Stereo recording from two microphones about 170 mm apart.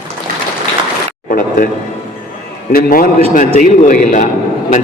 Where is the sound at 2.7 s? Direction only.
60° left (ahead or behind).